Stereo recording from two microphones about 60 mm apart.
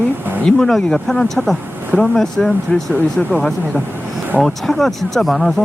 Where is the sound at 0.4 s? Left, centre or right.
Centre.